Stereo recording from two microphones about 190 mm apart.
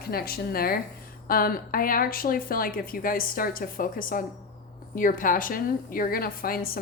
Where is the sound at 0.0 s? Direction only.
55° left (ahead or behind).